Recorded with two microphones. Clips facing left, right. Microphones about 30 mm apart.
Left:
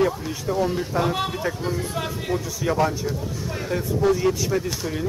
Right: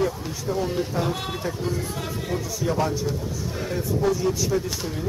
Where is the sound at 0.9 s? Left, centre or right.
Left.